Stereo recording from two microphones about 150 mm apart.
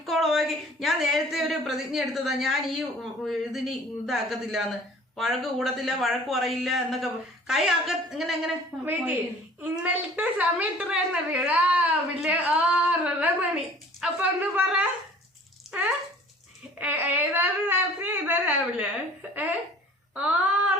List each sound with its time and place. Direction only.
0.0 s a man's voice: centre (ahead or behind)
16.7 s a woman's voice: 10° right (ahead or behind)